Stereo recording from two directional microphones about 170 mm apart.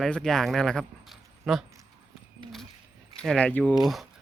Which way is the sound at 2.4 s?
30° right (ahead or behind).